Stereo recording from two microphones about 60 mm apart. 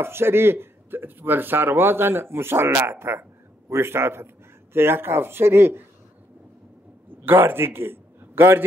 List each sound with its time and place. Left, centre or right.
0.0 s a man's voice: right
7.2 s speech: right